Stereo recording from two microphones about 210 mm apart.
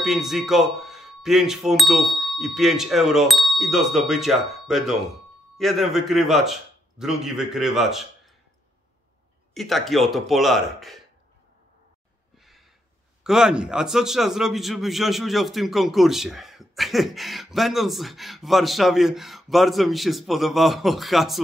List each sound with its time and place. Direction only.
0.0 s a man's voice: centre (ahead or behind)
9.5 s a man's voice: centre (ahead or behind)
12.4 s a sound: centre (ahead or behind)
13.2 s a man's voice: 5° right (ahead or behind)